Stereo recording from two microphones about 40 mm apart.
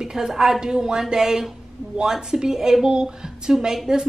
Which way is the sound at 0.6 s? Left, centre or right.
Centre.